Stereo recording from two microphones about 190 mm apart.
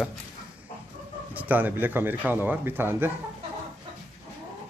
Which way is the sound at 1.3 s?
10° right (ahead or behind).